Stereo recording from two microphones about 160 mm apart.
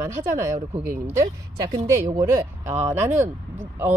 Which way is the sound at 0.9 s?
15° right (ahead or behind).